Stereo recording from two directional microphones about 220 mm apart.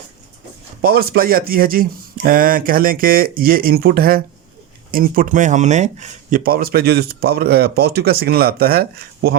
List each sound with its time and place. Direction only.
0.8 s speech: 45° right (ahead or behind)